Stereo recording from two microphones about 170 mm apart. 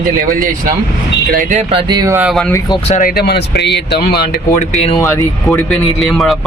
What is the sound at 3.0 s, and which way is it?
A man's voice, 65° left (ahead or behind).